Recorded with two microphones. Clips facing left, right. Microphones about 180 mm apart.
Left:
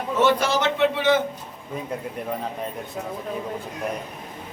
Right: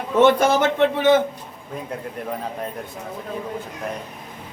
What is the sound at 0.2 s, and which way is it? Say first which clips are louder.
A man's voice: right 5 dB; 50° right (ahead or behind).